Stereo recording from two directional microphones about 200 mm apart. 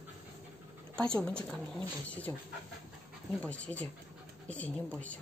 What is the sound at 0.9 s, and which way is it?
Speech, 5° left (ahead or behind).